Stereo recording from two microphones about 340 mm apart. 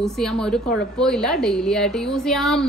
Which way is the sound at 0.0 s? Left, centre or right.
Centre.